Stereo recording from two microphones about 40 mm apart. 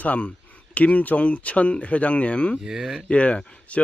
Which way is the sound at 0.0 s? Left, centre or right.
Left.